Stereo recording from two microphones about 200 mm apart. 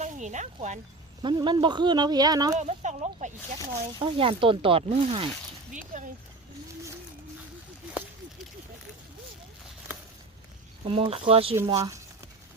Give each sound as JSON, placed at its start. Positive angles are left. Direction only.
{"t": 0.0, "sound": "speech", "side_deg": -35}
{"t": 1.2, "sound": "speech", "side_deg": -25}
{"t": 2.6, "sound": "speech", "side_deg": -35}
{"t": 4.0, "sound": "speech", "side_deg": -25}
{"t": 5.7, "sound": "speech", "side_deg": -40}
{"t": 10.8, "sound": "speech", "side_deg": -30}
{"t": 11.7, "sound": "a sound", "side_deg": -15}